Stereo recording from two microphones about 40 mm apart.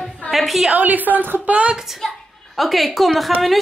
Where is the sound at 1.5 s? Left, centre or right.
Right.